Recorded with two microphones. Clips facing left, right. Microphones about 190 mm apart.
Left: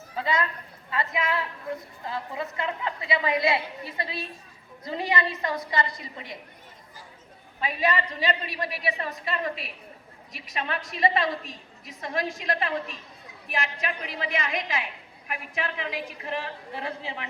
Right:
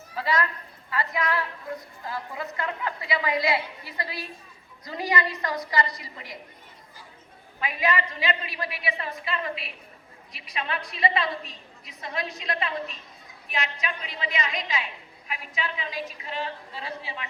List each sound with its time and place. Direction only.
0.2 s a woman's voice: 25° left (ahead or behind)
7.6 s a woman's voice: 35° left (ahead or behind); by 16.9 s 60° left (ahead or behind)